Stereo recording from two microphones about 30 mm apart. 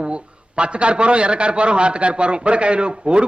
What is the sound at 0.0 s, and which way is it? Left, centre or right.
Speech, right.